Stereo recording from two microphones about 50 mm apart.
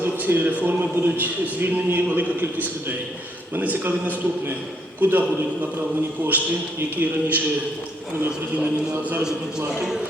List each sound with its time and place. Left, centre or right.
0.0 s a man's voice: right
6.2 s a man's voice: right
8.5 s a man's voice: right